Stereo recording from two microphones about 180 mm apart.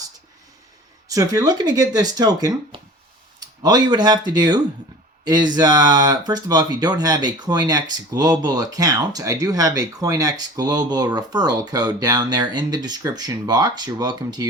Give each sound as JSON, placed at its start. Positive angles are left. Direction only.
{"t": 1.0, "sound": "speech", "side_deg": -20}